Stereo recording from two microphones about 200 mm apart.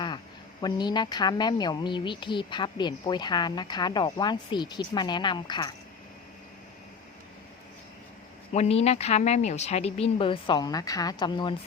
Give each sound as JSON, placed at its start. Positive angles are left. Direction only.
{"t": 0.6, "sound": "a woman's voice", "side_deg": 20}
{"t": 8.5, "sound": "speech", "side_deg": 30}